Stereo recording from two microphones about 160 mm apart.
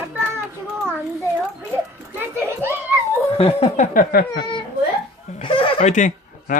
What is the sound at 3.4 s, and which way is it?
Speech, 40° left (ahead or behind).